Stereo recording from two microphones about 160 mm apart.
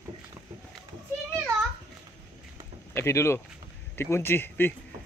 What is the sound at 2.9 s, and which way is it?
Speech, 15° left (ahead or behind).